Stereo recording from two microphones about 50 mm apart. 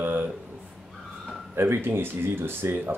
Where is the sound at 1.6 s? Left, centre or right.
Right.